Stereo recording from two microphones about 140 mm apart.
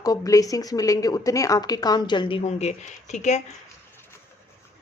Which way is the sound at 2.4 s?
50° left (ahead or behind).